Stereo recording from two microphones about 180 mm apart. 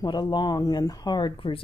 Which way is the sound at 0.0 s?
25° left (ahead or behind).